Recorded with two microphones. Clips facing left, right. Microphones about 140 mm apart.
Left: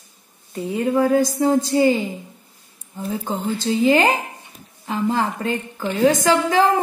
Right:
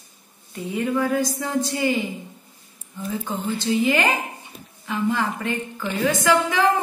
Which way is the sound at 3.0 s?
35° left (ahead or behind).